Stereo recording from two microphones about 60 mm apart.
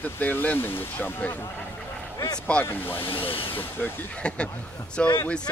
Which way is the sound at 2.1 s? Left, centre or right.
Left.